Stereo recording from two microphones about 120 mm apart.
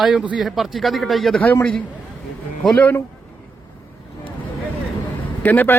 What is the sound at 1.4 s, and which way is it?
Speech, 15° left (ahead or behind).